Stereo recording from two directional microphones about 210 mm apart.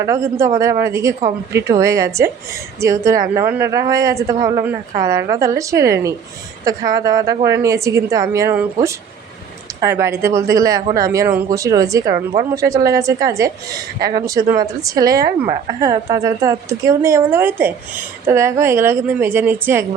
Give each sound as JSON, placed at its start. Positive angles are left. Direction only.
{"t": 0.0, "sound": "speech", "side_deg": -15}